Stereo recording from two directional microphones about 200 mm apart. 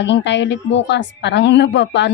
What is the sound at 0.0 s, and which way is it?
A woman's voice, 60° left (ahead or behind).